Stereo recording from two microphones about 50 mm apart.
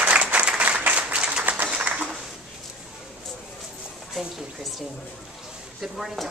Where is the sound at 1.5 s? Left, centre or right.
Right.